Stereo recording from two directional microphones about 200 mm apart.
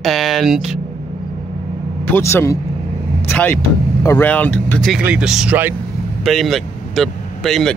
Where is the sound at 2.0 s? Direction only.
10° left (ahead or behind).